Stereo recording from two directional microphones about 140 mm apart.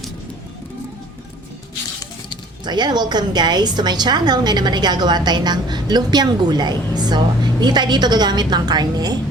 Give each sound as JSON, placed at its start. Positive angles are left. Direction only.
{"t": 2.6, "sound": "a woman's voice", "side_deg": -30}